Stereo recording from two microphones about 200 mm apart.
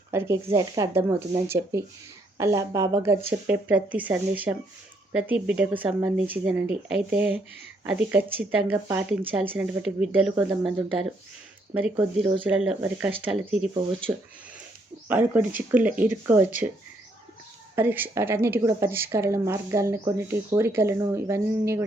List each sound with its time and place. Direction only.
0.1 s a woman's voice: 15° right (ahead or behind)
10.3 s speech: 20° right (ahead or behind)
11.7 s a woman's voice: 5° right (ahead or behind)
15.0 s a woman's voice: 10° right (ahead or behind)
17.7 s a woman's voice: 10° right (ahead or behind)